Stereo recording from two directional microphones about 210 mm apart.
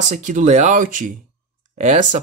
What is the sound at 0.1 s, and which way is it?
Speech, 35° right (ahead or behind).